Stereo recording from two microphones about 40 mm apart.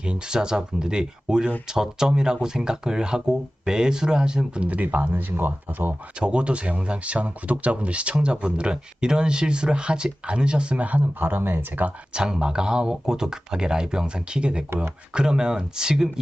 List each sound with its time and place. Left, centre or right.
0.0 s speech: right
4.6 s speech: right
6.1 s speech: right
10.8 s speech: right
12.1 s speech: right